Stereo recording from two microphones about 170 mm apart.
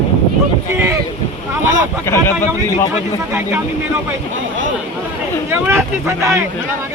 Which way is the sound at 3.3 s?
15° right (ahead or behind).